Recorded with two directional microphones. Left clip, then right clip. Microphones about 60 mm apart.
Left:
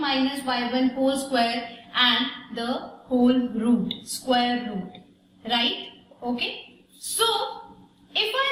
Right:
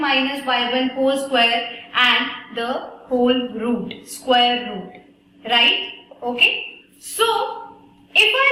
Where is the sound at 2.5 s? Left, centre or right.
Centre.